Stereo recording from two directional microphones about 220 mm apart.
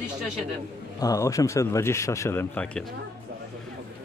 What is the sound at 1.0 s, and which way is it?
Speech, 15° left (ahead or behind).